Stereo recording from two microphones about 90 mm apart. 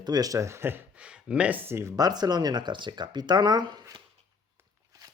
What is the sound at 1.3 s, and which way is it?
Speech, 10° right (ahead or behind).